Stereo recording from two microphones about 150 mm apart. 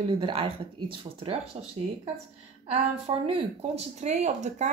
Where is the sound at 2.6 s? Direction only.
40° right (ahead or behind).